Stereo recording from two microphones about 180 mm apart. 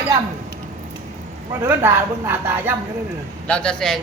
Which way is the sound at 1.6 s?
15° right (ahead or behind).